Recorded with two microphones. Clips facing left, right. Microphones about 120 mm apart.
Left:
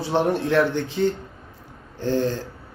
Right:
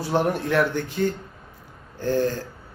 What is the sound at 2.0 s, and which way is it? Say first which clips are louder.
Speech: even; 20° left (ahead or behind).